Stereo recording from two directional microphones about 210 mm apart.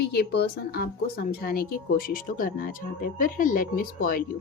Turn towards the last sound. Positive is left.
turn(degrees=45)  # may be behind; listen again after turning